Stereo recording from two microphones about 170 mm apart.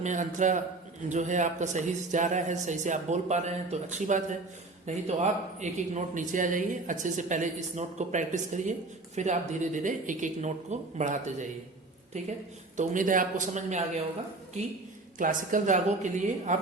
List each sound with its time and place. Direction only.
0.0 s a woman's voice: 45° right (ahead or behind)
15.2 s speech: 50° right (ahead or behind)